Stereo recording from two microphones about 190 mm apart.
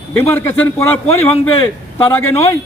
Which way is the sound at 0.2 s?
10° left (ahead or behind).